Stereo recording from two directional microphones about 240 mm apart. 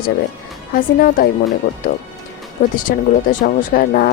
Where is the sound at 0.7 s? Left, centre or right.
Left.